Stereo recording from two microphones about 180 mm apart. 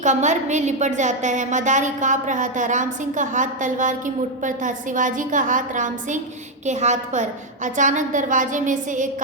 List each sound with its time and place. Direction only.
0.0 s a woman's voice: 40° right (ahead or behind)